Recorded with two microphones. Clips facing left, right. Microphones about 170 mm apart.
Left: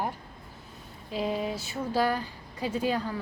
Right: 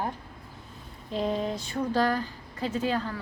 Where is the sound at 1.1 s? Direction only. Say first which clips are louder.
Right 1 dB; 5° left (ahead or behind).